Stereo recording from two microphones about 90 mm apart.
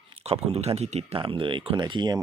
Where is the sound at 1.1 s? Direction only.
75° right (ahead or behind).